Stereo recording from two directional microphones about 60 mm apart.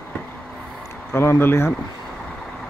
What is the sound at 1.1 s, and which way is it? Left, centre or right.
Speech, left.